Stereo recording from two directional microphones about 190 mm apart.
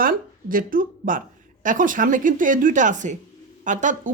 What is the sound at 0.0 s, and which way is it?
Speech, 45° right (ahead or behind).